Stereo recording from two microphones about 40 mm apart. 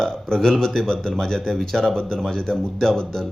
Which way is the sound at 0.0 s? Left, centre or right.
Centre.